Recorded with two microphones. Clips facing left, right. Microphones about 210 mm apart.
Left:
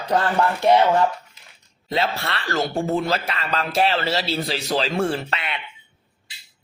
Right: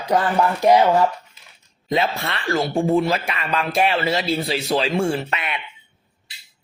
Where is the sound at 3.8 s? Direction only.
10° right (ahead or behind).